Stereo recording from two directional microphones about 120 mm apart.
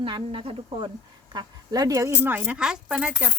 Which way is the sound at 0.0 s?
50° right (ahead or behind).